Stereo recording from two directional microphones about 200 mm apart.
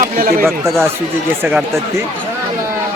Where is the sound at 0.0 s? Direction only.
45° right (ahead or behind).